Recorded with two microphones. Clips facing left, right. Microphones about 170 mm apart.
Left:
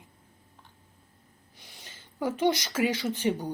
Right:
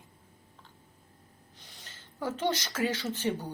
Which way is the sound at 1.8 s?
15° left (ahead or behind).